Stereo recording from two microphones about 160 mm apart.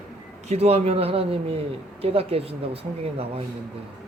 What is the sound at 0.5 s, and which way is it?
Speech, 40° right (ahead or behind).